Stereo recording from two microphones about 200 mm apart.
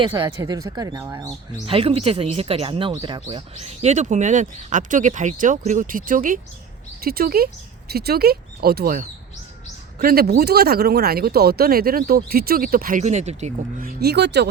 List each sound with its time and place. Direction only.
0.0 s speech: 25° right (ahead or behind)
1.6 s speech: 30° right (ahead or behind); by 14.4 s 55° right (ahead or behind)